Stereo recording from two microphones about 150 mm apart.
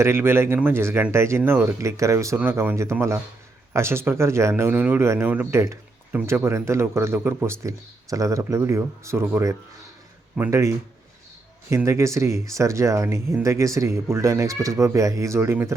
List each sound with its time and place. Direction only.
0.0 s speech: 15° right (ahead or behind)
11.9 s speech: 20° right (ahead or behind)